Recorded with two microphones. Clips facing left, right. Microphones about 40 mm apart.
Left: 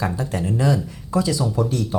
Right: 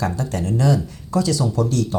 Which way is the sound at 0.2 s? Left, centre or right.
Centre.